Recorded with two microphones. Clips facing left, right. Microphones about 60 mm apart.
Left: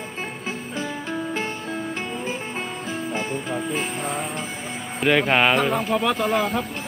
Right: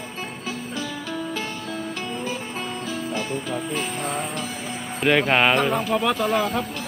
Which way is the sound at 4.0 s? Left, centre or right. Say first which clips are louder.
Even; centre.